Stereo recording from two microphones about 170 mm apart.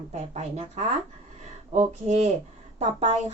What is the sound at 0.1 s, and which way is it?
A woman's voice, 40° right (ahead or behind).